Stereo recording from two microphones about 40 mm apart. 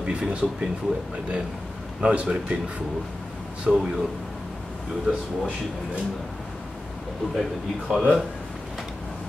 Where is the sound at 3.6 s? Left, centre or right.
Right.